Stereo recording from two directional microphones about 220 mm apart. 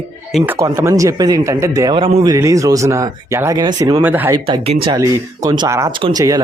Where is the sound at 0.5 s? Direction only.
15° right (ahead or behind).